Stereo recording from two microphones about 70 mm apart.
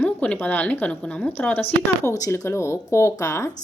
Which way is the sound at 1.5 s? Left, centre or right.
Left.